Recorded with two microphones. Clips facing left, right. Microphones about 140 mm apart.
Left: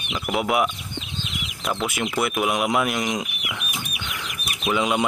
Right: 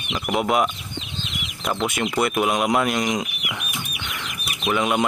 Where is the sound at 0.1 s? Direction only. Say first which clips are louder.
Right 2 dB; 5° left (ahead or behind).